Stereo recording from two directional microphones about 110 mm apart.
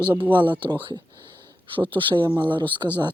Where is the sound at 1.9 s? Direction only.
50° right (ahead or behind).